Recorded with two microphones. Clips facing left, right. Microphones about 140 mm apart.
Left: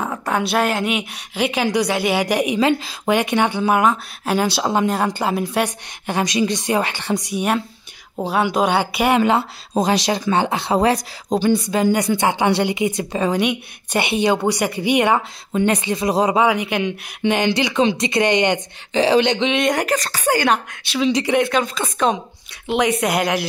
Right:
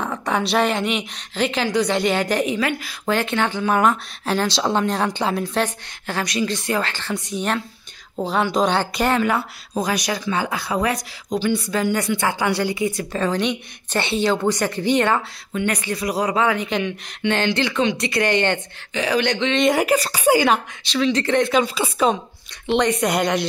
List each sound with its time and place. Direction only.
0.0 s a woman's voice: 5° left (ahead or behind)
9.2 s speech: 25° left (ahead or behind)
11.5 s a woman's voice: 20° left (ahead or behind)
18.9 s speech: 25° left (ahead or behind)
19.5 s speech: centre (ahead or behind)
21.0 s a woman's voice: 15° left (ahead or behind)
21.5 s speech: 5° right (ahead or behind)
22.7 s speech: 5° left (ahead or behind)